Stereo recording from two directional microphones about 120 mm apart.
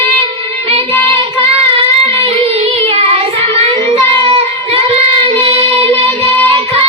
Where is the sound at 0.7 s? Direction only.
55° right (ahead or behind).